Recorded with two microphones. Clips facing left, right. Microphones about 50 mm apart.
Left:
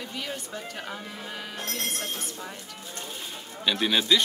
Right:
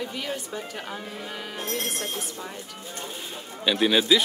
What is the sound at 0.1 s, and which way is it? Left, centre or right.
Speech, centre.